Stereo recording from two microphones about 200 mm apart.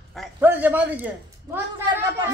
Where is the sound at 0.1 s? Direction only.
Centre (ahead or behind).